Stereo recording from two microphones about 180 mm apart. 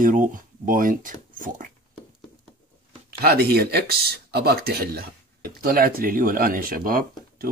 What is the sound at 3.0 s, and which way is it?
Speech, 60° right (ahead or behind).